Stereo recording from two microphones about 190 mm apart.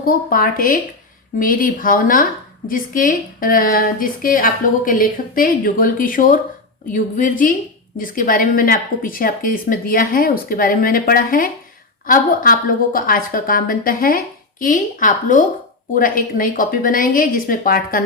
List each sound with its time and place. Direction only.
0.0 s a woman's voice: 50° left (ahead or behind)